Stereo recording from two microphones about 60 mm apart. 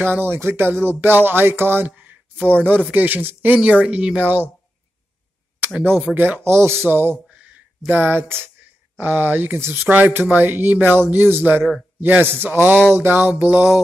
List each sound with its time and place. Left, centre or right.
0.0 s speech: right
1.9 s a sound: right
2.9 s speech: right
4.2 s speech: right
6.1 s speech: centre
6.4 s speech: right
13.3 s speech: right